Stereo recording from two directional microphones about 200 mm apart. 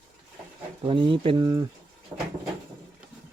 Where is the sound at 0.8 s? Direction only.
25° right (ahead or behind).